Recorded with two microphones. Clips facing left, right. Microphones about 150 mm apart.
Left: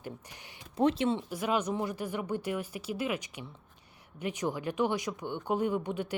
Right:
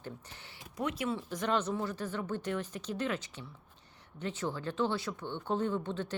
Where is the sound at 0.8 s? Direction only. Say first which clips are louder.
Left 7 dB; 30° left (ahead or behind).